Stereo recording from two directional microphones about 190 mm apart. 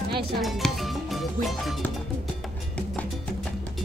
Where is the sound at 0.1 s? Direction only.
55° right (ahead or behind).